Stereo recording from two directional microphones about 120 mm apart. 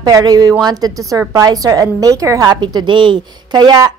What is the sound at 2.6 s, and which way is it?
A woman's voice, 40° right (ahead or behind).